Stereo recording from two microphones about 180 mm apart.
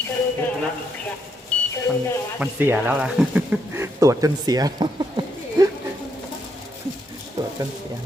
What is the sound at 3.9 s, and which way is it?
Speech, 20° right (ahead or behind).